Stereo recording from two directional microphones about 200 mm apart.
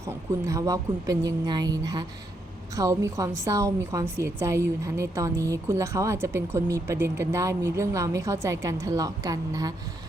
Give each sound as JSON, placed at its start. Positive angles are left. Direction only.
{"t": 0.0, "sound": "a woman's voice", "side_deg": -15}